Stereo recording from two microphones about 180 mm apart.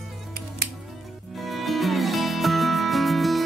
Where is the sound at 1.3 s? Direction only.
Centre (ahead or behind).